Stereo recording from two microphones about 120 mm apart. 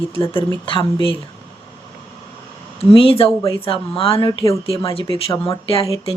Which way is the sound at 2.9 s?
50° left (ahead or behind).